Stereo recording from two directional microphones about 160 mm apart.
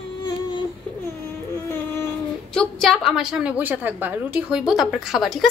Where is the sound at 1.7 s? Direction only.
15° left (ahead or behind).